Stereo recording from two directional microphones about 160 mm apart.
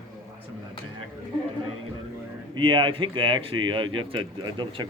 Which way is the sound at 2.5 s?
30° right (ahead or behind).